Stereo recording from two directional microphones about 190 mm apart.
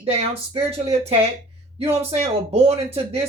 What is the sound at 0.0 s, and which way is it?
Speech, 30° right (ahead or behind).